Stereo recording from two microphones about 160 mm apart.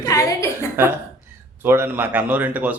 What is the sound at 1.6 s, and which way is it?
A man's voice, 15° right (ahead or behind).